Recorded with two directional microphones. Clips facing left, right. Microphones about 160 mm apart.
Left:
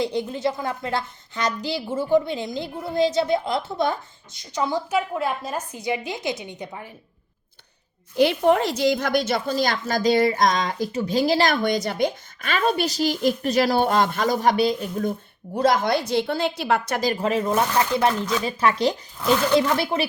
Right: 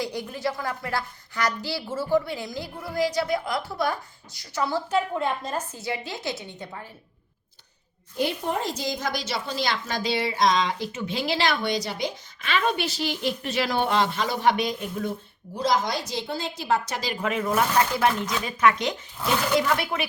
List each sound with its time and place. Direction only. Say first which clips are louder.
0.0 s a woman's voice: left 5 dB; 20° left (ahead or behind)
8.1 s a woman's voice: left 9 dB; 85° left; by 15.1 s 40° left (ahead or behind)
15.5 s a woman's voice: left 5 dB; 60° left (ahead or behind)
17.2 s speech: right 1 dB; 30° left (ahead or behind)